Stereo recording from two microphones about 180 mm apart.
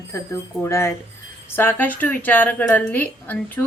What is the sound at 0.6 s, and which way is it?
A woman's voice, 15° left (ahead or behind).